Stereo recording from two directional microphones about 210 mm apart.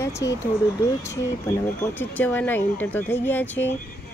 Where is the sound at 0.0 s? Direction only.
15° left (ahead or behind).